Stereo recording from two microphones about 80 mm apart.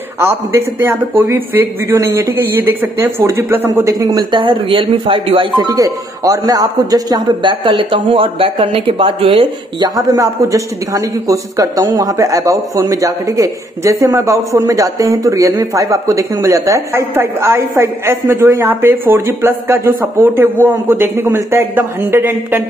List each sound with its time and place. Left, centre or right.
0.2 s a man's voice: right
4.1 s speech: right
5.7 s speech: right
9.8 s a man's voice: right
16.9 s a woman's voice: right